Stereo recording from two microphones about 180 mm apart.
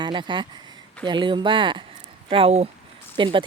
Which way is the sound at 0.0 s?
25° right (ahead or behind).